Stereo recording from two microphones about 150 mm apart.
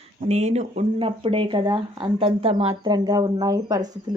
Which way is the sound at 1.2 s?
35° right (ahead or behind).